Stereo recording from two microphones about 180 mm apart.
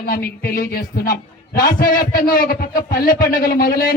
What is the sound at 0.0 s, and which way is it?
A man's voice, 55° left (ahead or behind).